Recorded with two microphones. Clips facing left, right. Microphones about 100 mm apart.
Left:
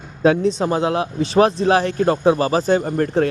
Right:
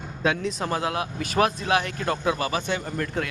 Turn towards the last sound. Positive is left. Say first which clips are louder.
# left 10 dB
turn(degrees=35)  # may be behind; listen again after turning